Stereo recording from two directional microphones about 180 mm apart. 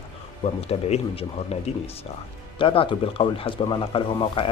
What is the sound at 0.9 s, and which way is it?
Speech, 35° left (ahead or behind).